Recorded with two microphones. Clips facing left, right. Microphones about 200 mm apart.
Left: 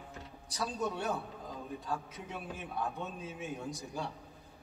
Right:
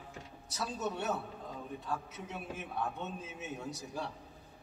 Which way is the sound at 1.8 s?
Centre (ahead or behind).